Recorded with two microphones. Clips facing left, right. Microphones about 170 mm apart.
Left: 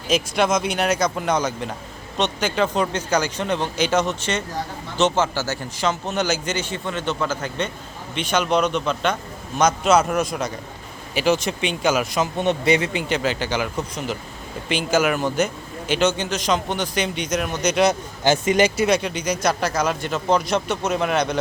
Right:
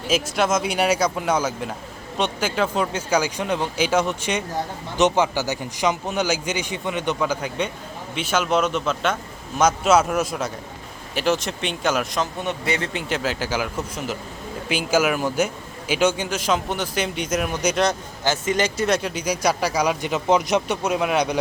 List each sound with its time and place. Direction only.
0.1 s a man's voice: 5° right (ahead or behind)
12.4 s speech: 20° left (ahead or behind)
12.9 s a man's voice: centre (ahead or behind)
18.2 s speech: 15° left (ahead or behind)
18.9 s a man's voice: centre (ahead or behind)
20.9 s speech: 5° right (ahead or behind)